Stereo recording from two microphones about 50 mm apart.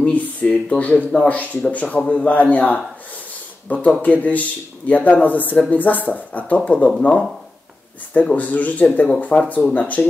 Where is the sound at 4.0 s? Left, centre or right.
Left.